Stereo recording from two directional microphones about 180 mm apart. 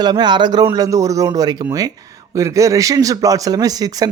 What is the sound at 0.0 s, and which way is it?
Speech, 25° right (ahead or behind).